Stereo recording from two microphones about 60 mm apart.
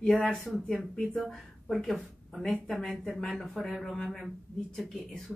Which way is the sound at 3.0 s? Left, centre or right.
Centre.